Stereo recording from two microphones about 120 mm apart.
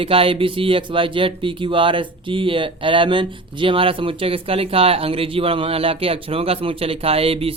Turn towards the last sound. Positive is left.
turn(degrees=-55)  # may be behind; listen again after turning